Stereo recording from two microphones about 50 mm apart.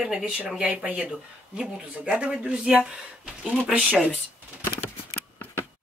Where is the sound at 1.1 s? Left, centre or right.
Centre.